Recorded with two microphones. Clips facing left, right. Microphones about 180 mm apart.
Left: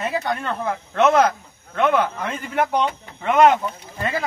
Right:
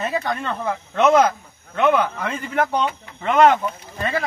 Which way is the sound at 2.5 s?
15° left (ahead or behind).